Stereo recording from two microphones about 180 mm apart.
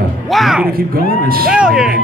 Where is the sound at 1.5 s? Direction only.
5° right (ahead or behind).